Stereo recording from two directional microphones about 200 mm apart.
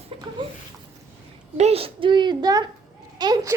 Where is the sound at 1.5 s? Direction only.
30° right (ahead or behind).